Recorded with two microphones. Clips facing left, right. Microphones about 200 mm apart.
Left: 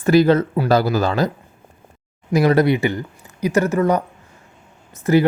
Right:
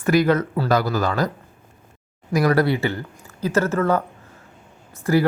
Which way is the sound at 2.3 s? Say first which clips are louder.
Left 3 dB; 25° left (ahead or behind).